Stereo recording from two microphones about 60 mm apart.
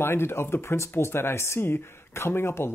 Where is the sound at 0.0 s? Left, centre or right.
Left.